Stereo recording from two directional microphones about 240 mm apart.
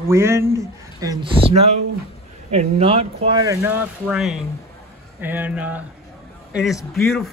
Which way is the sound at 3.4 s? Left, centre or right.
Centre.